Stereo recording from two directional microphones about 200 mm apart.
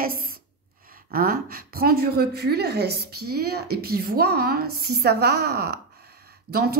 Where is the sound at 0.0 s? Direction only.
45° right (ahead or behind).